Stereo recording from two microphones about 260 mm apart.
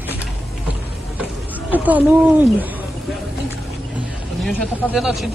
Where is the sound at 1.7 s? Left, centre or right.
Centre.